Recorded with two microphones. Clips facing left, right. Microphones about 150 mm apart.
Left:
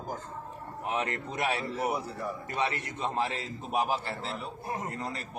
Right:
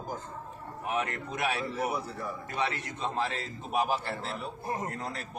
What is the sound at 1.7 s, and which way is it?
Speech, 20° left (ahead or behind).